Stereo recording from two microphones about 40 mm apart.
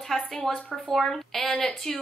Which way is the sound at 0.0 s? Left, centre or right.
Centre.